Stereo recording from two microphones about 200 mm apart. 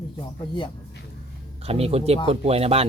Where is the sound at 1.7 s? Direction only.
30° right (ahead or behind).